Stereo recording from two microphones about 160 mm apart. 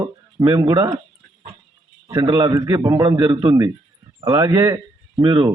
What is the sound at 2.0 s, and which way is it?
Speech, 25° right (ahead or behind).